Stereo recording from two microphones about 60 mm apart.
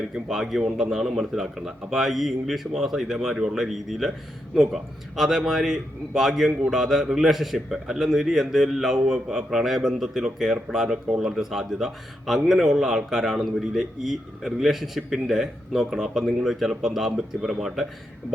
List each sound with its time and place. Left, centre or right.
0.1 s a man's voice: centre